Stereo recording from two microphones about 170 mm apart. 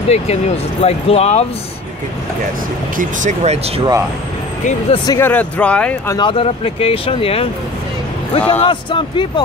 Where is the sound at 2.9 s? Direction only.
45° right (ahead or behind).